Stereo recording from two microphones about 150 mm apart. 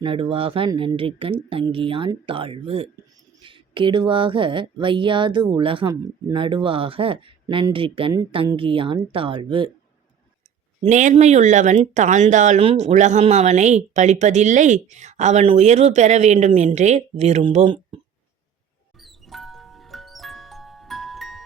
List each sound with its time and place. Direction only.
0.0 s speech: 35° right (ahead or behind)
10.8 s speech: 55° right (ahead or behind)
18.9 s music: centre (ahead or behind)